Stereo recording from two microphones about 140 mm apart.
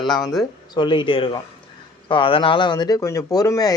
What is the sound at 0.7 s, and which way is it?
Speech, 35° left (ahead or behind).